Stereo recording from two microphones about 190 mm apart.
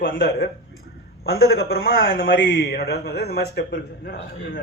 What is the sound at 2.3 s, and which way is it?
A man's voice, 70° left (ahead or behind).